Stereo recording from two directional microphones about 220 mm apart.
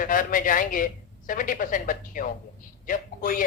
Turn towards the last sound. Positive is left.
turn(degrees=40)  # may be behind; listen again after turning